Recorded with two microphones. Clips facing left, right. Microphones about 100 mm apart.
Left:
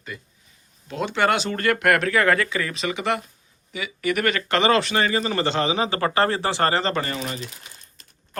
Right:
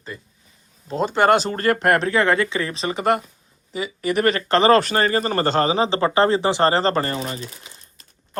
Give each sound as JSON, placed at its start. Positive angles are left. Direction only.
{"t": 0.9, "sound": "speech", "side_deg": -40}